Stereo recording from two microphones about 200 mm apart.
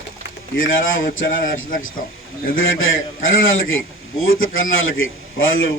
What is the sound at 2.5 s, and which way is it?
A man's voice, 80° left.